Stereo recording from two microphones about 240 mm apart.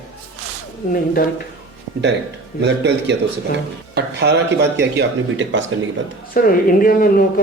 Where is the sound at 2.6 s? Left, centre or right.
Right.